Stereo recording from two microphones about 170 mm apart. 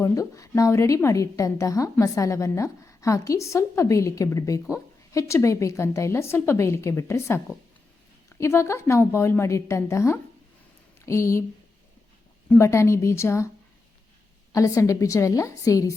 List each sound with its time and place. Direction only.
0.0 s a woman's voice: 20° left (ahead or behind)
12.5 s a woman's voice: 15° left (ahead or behind)
14.5 s a woman's voice: 20° left (ahead or behind)